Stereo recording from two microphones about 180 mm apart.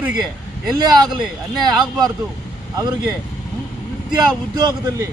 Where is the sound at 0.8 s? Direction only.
25° right (ahead or behind).